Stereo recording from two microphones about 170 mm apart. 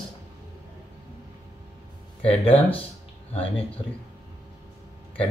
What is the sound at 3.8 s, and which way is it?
Speech, 25° left (ahead or behind).